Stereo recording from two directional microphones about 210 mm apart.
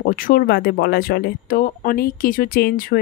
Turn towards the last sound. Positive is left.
turn(degrees=45)  # may be behind; listen again after turning